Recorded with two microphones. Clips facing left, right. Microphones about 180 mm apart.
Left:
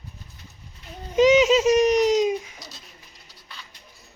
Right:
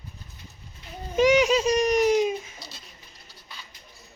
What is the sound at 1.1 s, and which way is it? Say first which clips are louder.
Baby cry: left 3 dB; 20° left (ahead or behind).